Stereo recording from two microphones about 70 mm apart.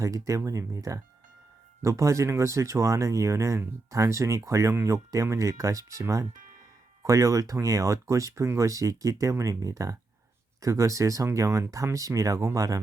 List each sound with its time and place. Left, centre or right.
0.0 s speech: right